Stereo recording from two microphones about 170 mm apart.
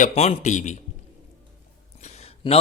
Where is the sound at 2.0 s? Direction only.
40° left (ahead or behind).